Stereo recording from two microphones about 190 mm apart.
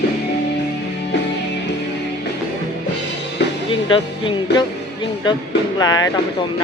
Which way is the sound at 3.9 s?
25° left (ahead or behind).